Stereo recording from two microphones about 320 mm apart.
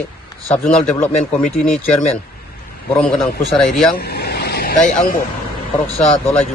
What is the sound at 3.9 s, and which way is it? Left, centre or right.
Vehicle, left.